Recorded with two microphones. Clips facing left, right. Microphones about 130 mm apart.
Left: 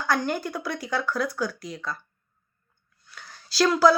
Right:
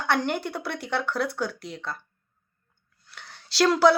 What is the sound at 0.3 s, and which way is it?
Speech, 70° right (ahead or behind).